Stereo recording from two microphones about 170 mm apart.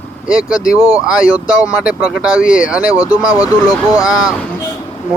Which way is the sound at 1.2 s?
5° right (ahead or behind).